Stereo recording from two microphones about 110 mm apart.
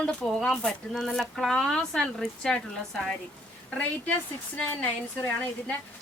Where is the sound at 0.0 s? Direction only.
10° left (ahead or behind).